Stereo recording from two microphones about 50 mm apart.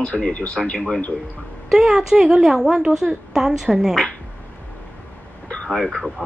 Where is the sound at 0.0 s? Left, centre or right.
Left.